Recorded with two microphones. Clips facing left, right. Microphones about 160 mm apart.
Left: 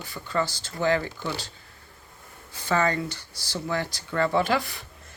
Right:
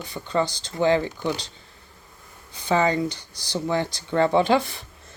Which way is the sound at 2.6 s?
20° right (ahead or behind).